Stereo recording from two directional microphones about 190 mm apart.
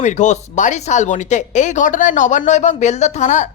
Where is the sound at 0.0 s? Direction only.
40° left (ahead or behind).